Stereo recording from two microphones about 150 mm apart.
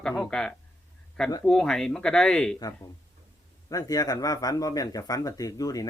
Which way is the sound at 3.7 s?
25° left (ahead or behind).